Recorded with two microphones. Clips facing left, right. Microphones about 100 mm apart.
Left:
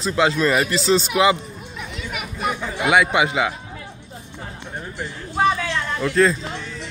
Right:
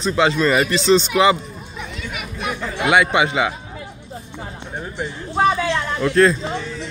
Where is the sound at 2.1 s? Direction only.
5° left (ahead or behind).